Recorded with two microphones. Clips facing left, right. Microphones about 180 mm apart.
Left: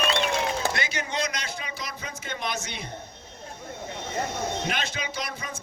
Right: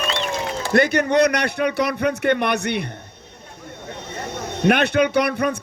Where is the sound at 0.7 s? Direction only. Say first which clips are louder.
Right 14 dB; 60° right (ahead or behind).